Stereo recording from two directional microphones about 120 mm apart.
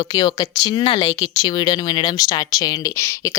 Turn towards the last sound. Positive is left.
turn(degrees=30)  # may be behind; listen again after turning